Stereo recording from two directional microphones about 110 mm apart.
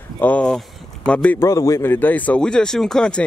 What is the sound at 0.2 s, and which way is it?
Speech, 10° left (ahead or behind).